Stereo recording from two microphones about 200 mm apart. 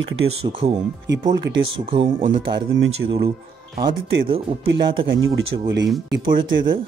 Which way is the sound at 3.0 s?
45° right (ahead or behind).